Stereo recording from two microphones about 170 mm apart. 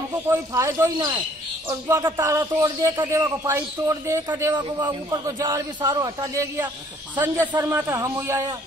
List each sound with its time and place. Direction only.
0.3 s a man's voice: 20° right (ahead or behind)